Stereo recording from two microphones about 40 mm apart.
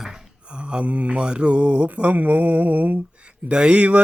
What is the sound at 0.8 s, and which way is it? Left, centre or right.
Speech, right.